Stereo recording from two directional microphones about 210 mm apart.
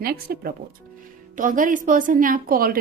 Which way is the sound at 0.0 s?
45° right (ahead or behind).